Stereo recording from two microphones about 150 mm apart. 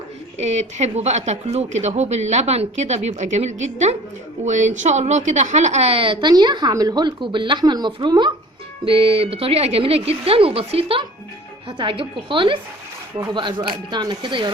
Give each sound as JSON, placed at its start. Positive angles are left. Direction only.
{"t": 0.3, "sound": "a woman's voice", "side_deg": -50}